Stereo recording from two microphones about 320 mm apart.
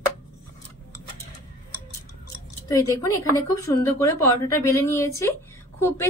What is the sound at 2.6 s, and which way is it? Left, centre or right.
A woman's voice, centre.